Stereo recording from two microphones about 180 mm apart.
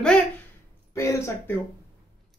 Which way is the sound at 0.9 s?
15° left (ahead or behind).